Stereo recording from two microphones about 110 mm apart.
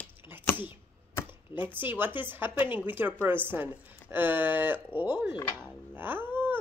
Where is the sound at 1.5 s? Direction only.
15° right (ahead or behind).